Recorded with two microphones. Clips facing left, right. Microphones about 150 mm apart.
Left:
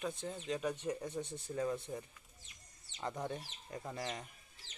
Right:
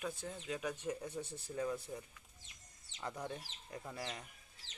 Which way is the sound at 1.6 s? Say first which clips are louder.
Left 2 dB; 20° left (ahead or behind).